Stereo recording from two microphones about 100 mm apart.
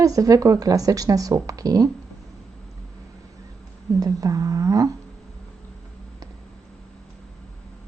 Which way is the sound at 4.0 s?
35° right (ahead or behind).